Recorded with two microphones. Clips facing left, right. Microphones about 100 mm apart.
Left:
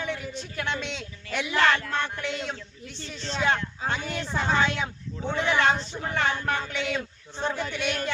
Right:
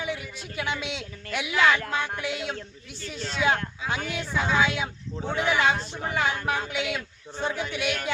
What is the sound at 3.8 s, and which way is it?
Speech, 40° left (ahead or behind).